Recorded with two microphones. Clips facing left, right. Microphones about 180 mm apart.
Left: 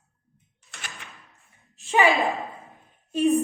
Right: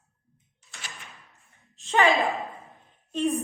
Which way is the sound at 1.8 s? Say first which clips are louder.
Left 2 dB; 10° left (ahead or behind).